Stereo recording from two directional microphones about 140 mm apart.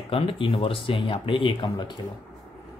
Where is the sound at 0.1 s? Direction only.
40° left (ahead or behind).